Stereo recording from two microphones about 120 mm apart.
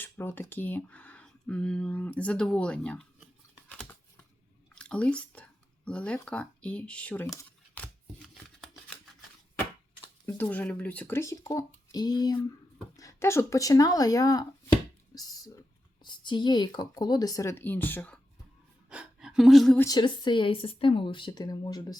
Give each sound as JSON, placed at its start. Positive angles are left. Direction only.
{"t": 0.0, "sound": "speech", "side_deg": 20}
{"t": 3.7, "sound": "crumpling", "side_deg": 10}
{"t": 4.7, "sound": "a sound", "side_deg": 10}
{"t": 6.2, "sound": "speech", "side_deg": 10}
{"t": 8.2, "sound": "a sound", "side_deg": 0}
{"t": 10.2, "sound": "speech", "side_deg": 15}
{"t": 15.1, "sound": "a sound", "side_deg": 30}
{"t": 16.0, "sound": "speech", "side_deg": 40}
{"t": 18.9, "sound": "gasp", "side_deg": -5}
{"t": 19.9, "sound": "speech", "side_deg": 40}